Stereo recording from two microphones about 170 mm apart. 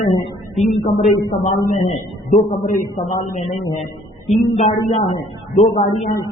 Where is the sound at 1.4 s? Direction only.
50° left (ahead or behind).